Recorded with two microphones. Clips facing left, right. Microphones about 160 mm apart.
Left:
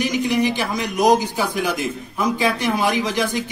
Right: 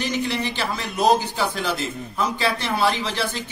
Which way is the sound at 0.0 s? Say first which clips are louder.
Left 5 dB; 10° left (ahead or behind).